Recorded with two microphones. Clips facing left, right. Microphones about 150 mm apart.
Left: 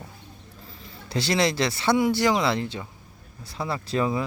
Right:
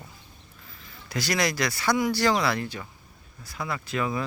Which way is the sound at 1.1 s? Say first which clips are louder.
Left 3 dB; 30° left (ahead or behind).